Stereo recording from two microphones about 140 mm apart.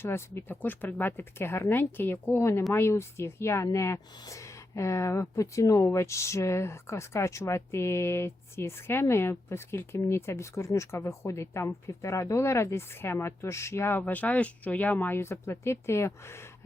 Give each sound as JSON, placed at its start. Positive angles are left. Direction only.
{"t": 0.0, "sound": "speech", "side_deg": 15}